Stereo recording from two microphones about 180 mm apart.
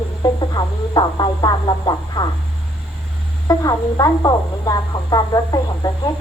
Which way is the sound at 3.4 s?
20° left (ahead or behind).